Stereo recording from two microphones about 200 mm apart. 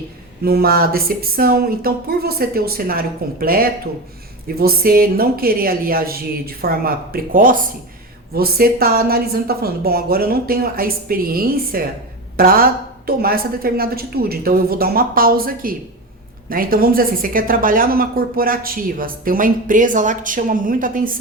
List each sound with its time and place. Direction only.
0.4 s a woman's voice: 50° right (ahead or behind)